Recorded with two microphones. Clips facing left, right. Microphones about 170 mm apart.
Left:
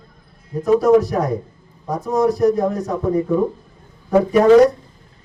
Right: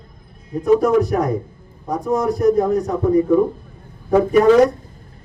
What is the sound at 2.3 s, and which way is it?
Speech, 40° left (ahead or behind).